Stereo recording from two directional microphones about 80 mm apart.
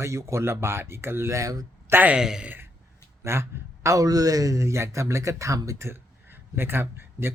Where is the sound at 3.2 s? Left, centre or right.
Right.